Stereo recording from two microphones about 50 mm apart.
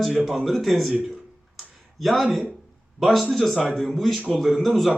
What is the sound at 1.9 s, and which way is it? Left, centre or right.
A man's voice, centre.